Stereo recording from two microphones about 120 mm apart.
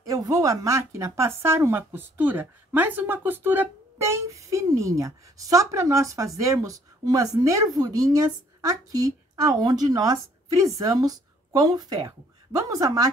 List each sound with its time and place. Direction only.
0.0 s a woman's voice: 30° right (ahead or behind)